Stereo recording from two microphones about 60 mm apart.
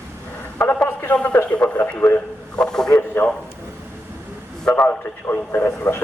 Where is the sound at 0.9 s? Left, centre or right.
Left; by 2.9 s centre.